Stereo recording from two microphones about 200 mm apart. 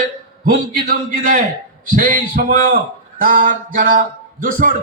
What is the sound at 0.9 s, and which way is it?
A man's voice, 40° right (ahead or behind).